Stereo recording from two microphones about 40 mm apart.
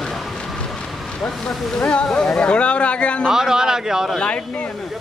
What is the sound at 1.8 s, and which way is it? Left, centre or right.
Speech, left.